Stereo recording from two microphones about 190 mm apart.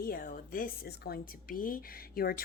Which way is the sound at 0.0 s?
50° left (ahead or behind).